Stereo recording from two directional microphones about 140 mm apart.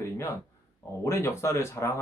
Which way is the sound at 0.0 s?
20° left (ahead or behind).